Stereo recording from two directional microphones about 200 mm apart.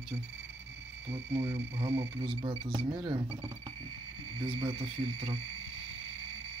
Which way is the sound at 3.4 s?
15° right (ahead or behind).